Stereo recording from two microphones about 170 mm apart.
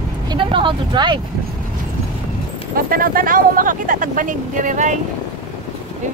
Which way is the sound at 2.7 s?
55° right (ahead or behind).